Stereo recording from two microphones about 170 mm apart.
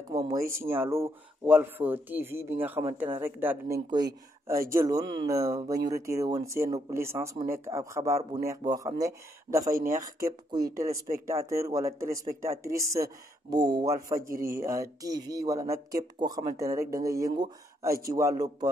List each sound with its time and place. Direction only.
0.1 s speech: 20° right (ahead or behind)